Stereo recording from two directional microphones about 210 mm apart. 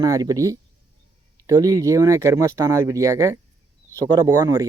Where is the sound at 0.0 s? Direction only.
15° right (ahead or behind).